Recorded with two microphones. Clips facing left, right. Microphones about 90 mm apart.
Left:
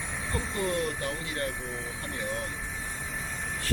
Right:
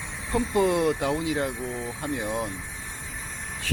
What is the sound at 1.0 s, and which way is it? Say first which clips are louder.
Speech: right 8 dB; 90° right.